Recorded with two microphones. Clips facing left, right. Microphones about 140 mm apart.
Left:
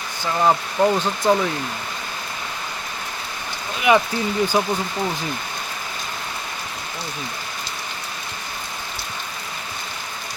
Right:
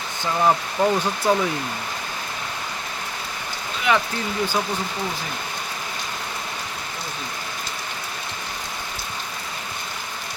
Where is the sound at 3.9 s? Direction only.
15° left (ahead or behind).